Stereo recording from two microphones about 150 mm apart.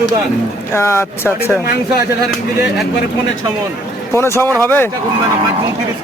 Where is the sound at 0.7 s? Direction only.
15° left (ahead or behind).